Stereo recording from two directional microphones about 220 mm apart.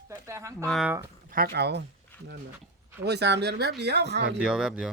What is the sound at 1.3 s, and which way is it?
Speech, 45° right (ahead or behind).